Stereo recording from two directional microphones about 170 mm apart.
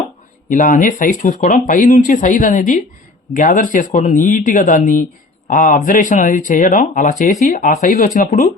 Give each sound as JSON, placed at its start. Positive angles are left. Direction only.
{"t": 0.5, "sound": "speech", "side_deg": 50}